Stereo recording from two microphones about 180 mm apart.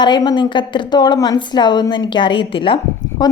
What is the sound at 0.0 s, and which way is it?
Speech, 25° left (ahead or behind).